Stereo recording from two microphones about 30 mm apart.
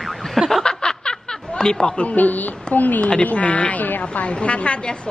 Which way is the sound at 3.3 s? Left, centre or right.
Left.